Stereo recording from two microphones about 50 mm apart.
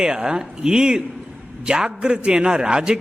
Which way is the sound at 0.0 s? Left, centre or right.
Centre.